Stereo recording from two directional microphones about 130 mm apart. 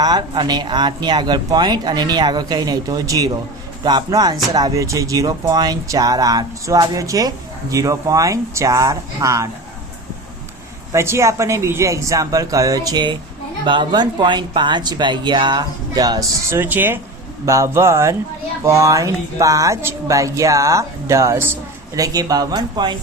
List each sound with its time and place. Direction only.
0.0 s speech: 35° right (ahead or behind)
10.9 s speech: 20° right (ahead or behind)
16.5 s speech: 15° right (ahead or behind); by 23.0 s 35° right (ahead or behind)